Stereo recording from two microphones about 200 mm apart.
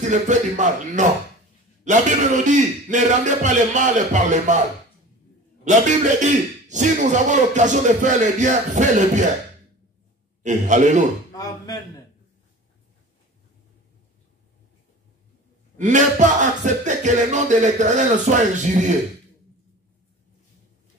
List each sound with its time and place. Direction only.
0.0 s speech: 35° right (ahead or behind)
5.6 s speech: 35° right (ahead or behind)
10.4 s speech: 40° right (ahead or behind)
11.3 s speech: 20° left (ahead or behind)
15.8 s speech: 40° right (ahead or behind)